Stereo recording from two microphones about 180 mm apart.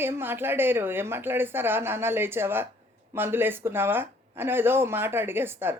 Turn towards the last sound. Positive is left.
turn(degrees=-10)  # may be behind; listen again after turning